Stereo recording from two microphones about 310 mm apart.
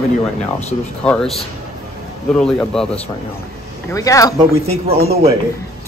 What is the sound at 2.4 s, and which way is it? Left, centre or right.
Speech, centre.